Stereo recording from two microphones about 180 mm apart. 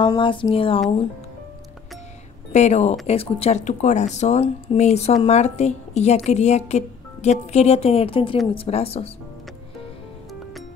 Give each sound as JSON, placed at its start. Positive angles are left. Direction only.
{"t": 0.0, "sound": "speech", "side_deg": 25}
{"t": 2.5, "sound": "speech", "side_deg": 40}